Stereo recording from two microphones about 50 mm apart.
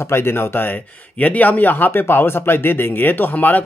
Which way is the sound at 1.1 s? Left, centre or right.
Left.